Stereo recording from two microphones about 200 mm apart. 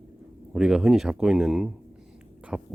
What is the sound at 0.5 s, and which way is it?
Speech, 5° right (ahead or behind).